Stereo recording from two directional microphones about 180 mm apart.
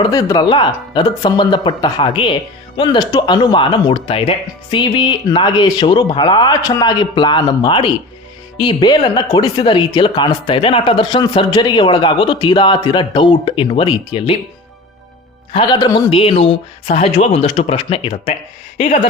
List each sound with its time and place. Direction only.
0.0 s speech: 20° left (ahead or behind)
15.5 s speech: 25° left (ahead or behind)